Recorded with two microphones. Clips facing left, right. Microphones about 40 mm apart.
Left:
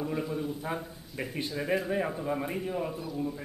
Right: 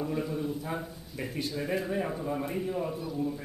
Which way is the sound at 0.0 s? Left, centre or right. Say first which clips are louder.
Even; centre.